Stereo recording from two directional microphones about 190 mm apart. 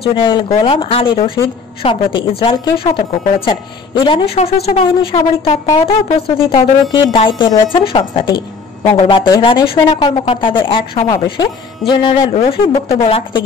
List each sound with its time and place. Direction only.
0.0 s a woman's voice: 25° left (ahead or behind)